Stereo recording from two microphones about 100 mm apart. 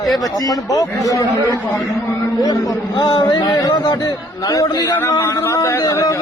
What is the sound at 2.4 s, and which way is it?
Speech, 40° left (ahead or behind).